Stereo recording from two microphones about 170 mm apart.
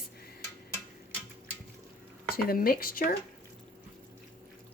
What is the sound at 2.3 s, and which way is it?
Speech, 60° left (ahead or behind).